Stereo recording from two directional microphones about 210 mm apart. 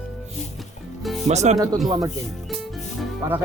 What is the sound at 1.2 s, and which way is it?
Music, 35° right (ahead or behind).